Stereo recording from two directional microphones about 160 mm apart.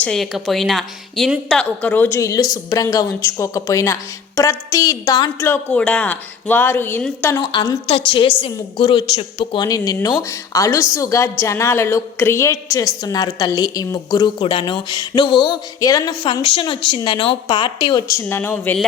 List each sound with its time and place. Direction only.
0.0 s a woman's voice: centre (ahead or behind); by 5.5 s 25° left (ahead or behind)
5.5 s a woman's voice: 10° left (ahead or behind)
7.3 s a woman's voice: 25° left (ahead or behind)
18.3 s a woman's voice: 15° left (ahead or behind)